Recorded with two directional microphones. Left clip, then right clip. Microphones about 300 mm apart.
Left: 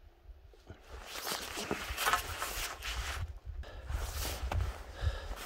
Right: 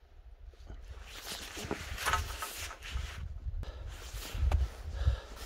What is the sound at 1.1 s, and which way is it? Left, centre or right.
Zipper, centre.